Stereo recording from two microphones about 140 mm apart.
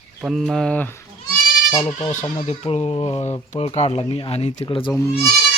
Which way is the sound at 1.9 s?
50° left (ahead or behind).